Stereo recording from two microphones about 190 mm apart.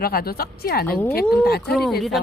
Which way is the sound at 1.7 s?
Centre (ahead or behind).